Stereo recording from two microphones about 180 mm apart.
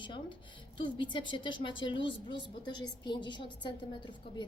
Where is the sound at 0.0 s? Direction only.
25° left (ahead or behind).